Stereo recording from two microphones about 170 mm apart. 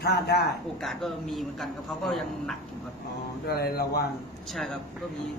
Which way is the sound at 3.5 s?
65° left (ahead or behind).